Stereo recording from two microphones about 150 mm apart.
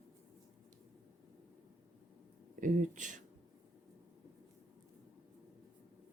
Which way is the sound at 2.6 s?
60° right (ahead or behind).